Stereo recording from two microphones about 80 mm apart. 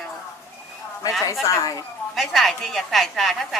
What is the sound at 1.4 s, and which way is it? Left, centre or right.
Speech, left.